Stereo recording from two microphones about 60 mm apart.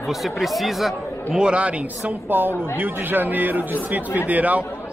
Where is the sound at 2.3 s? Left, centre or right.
Right.